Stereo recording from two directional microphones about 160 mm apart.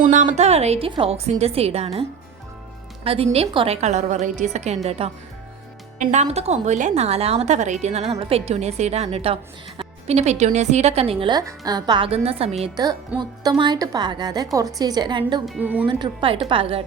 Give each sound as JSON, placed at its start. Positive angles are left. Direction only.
{"t": 0.1, "sound": "a woman's voice", "side_deg": -50}
{"t": 12.7, "sound": "a woman's voice", "side_deg": -25}
{"t": 15.4, "sound": "speech", "side_deg": -5}
{"t": 15.9, "sound": "a woman's voice", "side_deg": -30}